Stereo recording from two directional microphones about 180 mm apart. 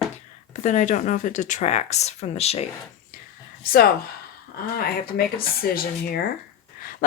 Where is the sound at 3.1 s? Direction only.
50° left (ahead or behind).